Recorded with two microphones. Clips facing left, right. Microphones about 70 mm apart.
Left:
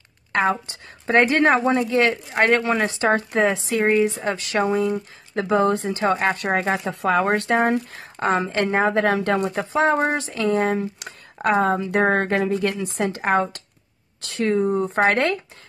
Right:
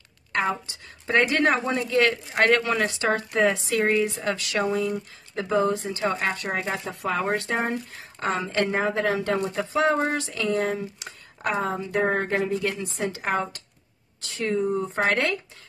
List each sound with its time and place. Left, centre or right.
0.3 s a woman's voice: left
1.1 s speech: left
2.3 s speech: left
4.9 s speech: left
6.8 s speech: left
8.5 s speech: left
8.8 s speech: left
9.6 s speech: left